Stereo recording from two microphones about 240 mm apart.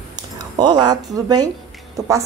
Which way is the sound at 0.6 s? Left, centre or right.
Centre.